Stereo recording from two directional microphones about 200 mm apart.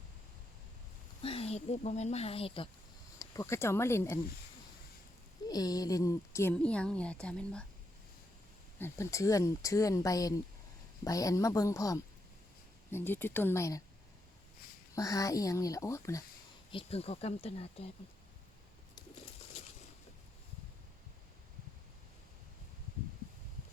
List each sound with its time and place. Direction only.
1.2 s speech: 30° left (ahead or behind)
3.2 s speech: 15° left (ahead or behind)
5.5 s a woman's voice: 20° left (ahead or behind)
8.8 s speech: 15° left (ahead or behind)
14.9 s speech: 15° left (ahead or behind)
16.7 s speech: 30° left (ahead or behind)